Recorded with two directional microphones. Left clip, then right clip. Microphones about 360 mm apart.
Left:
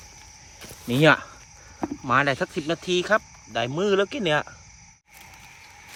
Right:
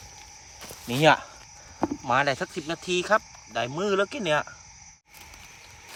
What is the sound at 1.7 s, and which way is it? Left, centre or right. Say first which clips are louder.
Speech: left 2 dB; centre.